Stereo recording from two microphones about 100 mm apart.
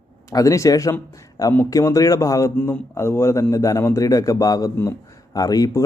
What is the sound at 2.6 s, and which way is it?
Speech, 20° left (ahead or behind).